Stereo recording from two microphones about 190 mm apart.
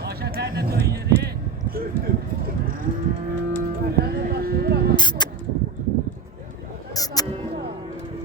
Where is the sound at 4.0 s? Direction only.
55° right (ahead or behind).